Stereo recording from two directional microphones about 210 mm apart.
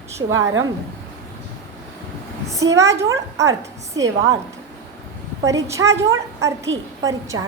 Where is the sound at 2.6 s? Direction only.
15° right (ahead or behind).